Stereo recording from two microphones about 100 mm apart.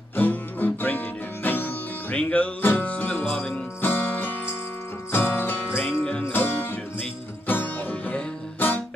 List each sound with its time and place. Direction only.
0.1 s music: 15° left (ahead or behind)
5.7 s music: centre (ahead or behind)
6.3 s music: 20° left (ahead or behind)